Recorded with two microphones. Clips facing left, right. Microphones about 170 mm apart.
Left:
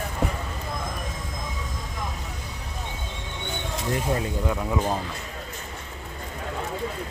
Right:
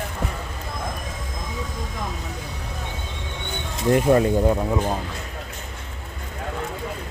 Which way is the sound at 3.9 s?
60° right (ahead or behind).